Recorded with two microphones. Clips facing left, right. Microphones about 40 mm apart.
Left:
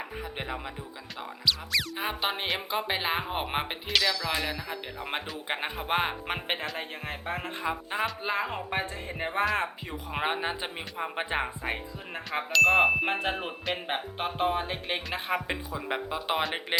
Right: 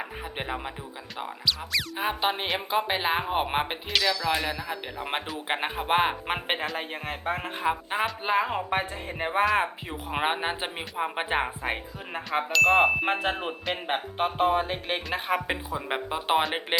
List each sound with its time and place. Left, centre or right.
0.0 s music: centre
1.5 s speech: centre
5.5 s speech: centre
7.7 s speech: right
8.2 s speech: centre
12.3 s speech: centre
15.4 s speech: right